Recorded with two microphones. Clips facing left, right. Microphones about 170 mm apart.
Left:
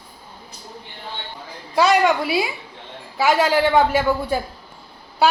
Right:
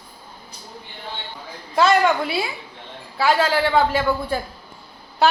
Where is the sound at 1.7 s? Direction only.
10° left (ahead or behind).